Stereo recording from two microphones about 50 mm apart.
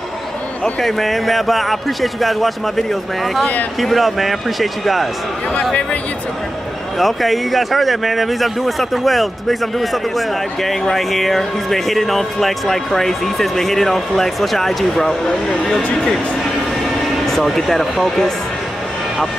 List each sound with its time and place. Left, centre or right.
0.7 s speech: centre
5.5 s speech: centre
7.0 s speech: centre
17.3 s speech: centre